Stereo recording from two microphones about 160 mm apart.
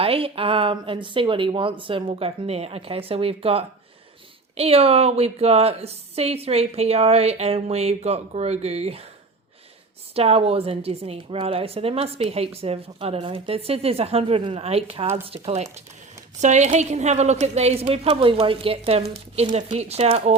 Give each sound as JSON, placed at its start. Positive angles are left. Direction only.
{"t": 0.0, "sound": "a woman's voice", "side_deg": -35}
{"t": 10.2, "sound": "a woman's voice", "side_deg": -40}